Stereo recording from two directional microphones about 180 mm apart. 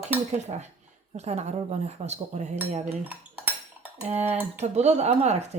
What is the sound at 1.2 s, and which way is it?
Speech, 40° right (ahead or behind).